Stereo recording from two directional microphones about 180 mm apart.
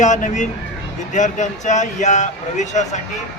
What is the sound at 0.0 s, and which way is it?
Speech, 45° left (ahead or behind).